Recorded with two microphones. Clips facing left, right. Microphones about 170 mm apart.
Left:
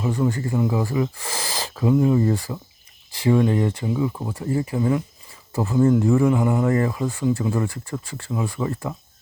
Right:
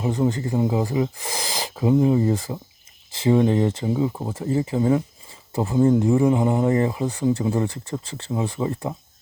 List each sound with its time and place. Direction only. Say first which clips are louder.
0.0 s speech: right 1 dB; 20° right (ahead or behind)
5.5 s speech: even; 20° right (ahead or behind)